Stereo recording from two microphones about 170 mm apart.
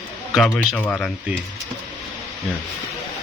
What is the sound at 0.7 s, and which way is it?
Speech, 10° left (ahead or behind).